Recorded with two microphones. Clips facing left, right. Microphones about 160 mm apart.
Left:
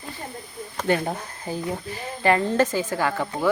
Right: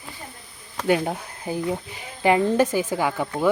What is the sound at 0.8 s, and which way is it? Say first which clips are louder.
Speech: right 2 dB; 5° right (ahead or behind).